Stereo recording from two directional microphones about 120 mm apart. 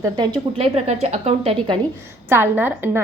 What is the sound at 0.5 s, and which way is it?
A woman's voice, 55° right (ahead or behind).